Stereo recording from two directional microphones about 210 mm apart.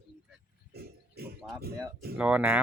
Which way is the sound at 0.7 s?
50° right (ahead or behind).